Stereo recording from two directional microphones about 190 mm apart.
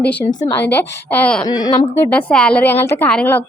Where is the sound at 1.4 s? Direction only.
20° left (ahead or behind).